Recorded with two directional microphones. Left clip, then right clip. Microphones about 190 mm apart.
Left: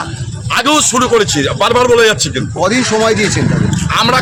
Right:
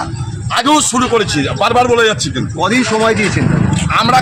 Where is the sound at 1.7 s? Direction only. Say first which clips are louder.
Left 2 dB; 30° left (ahead or behind).